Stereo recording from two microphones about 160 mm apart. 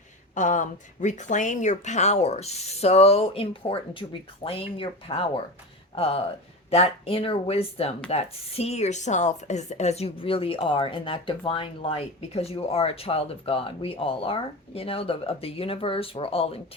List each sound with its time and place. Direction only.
0.3 s speech: 50° left (ahead or behind)